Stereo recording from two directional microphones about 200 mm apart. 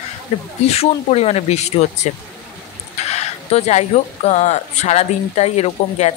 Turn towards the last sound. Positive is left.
turn(degrees=35)  # may be behind; listen again after turning